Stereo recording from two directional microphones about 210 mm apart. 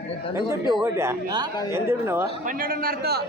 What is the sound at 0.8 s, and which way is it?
Speech, 10° right (ahead or behind).